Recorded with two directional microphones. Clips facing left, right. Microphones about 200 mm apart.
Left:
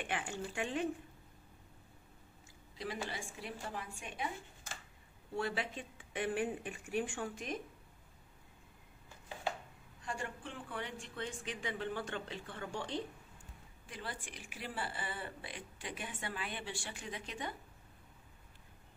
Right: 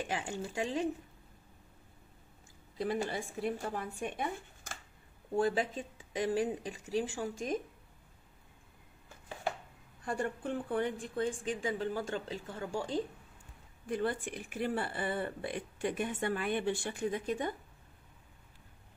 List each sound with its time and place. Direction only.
0.6 s speech: 35° right (ahead or behind)
2.8 s speech: 50° right (ahead or behind)
10.0 s speech: 55° right (ahead or behind)
13.8 s speech: 55° right (ahead or behind)